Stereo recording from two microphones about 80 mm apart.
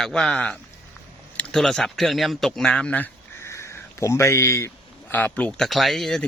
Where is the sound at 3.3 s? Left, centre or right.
Left.